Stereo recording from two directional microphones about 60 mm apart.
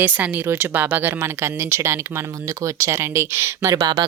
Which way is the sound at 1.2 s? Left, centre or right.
Right.